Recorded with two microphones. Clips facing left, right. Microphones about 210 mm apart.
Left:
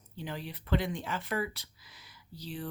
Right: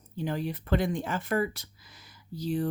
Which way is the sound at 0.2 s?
45° right (ahead or behind).